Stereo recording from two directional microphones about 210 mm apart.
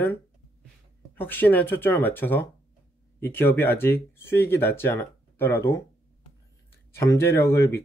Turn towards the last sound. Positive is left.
turn(degrees=15)  # may be behind; listen again after turning